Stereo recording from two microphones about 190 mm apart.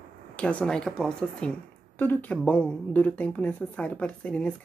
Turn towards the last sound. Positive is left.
turn(degrees=5)  # may be behind; listen again after turning